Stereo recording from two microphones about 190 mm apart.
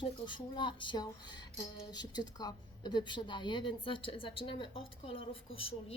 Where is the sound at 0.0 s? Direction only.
25° left (ahead or behind).